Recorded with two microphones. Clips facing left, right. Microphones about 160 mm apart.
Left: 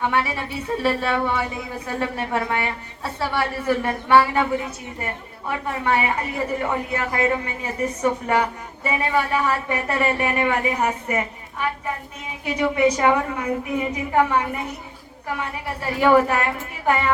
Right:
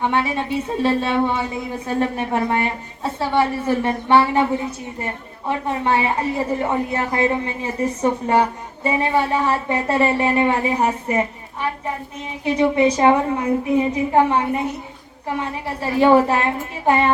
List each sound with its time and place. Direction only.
0.0 s a man's voice: 25° right (ahead or behind)
5.5 s a man's voice: 25° right (ahead or behind)
12.5 s a man's voice: 25° right (ahead or behind)
15.6 s a man's voice: 25° right (ahead or behind)